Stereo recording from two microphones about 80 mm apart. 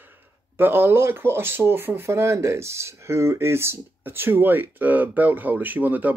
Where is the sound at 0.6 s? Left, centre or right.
Right.